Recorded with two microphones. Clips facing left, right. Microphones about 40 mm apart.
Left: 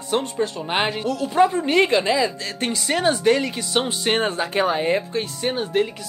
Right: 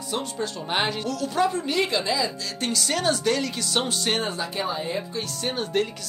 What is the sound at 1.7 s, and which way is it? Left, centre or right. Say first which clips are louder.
Speech: left 6 dB; left.